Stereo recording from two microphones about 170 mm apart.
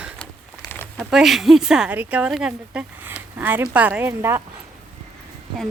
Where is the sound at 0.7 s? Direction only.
10° left (ahead or behind).